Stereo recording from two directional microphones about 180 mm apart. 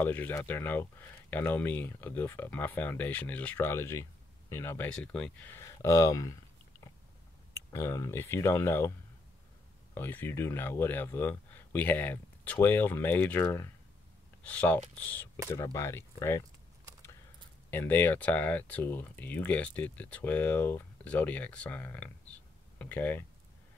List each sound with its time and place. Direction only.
0.0 s speech: 10° left (ahead or behind)
7.5 s speech: 15° left (ahead or behind)
9.9 s speech: 10° left (ahead or behind)
17.6 s speech: 10° left (ahead or behind)